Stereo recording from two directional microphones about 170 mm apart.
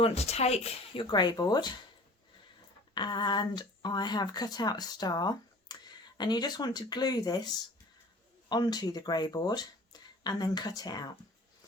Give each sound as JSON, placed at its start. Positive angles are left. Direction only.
{"t": 0.0, "sound": "speech", "side_deg": 40}
{"t": 1.1, "sound": "speech", "side_deg": 25}
{"t": 2.9, "sound": "speech", "side_deg": 25}